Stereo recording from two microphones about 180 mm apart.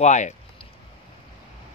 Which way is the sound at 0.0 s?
40° left (ahead or behind).